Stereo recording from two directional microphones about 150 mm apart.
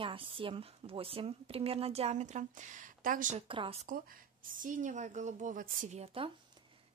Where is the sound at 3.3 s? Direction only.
35° right (ahead or behind).